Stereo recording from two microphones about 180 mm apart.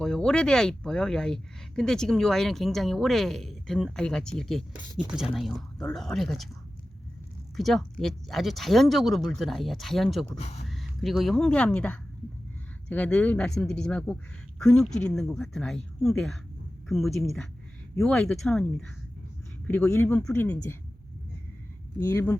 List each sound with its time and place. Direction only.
0.0 s speech: 5° left (ahead or behind)
7.5 s speech: centre (ahead or behind)
10.3 s speech: 35° left (ahead or behind)
10.7 s speech: centre (ahead or behind)
21.9 s speech: 15° left (ahead or behind)